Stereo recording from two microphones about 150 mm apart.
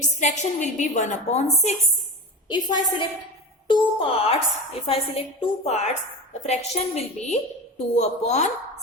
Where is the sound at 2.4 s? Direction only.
30° left (ahead or behind); by 8.5 s 50° left (ahead or behind).